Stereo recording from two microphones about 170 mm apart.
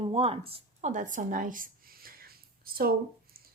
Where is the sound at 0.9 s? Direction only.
50° right (ahead or behind).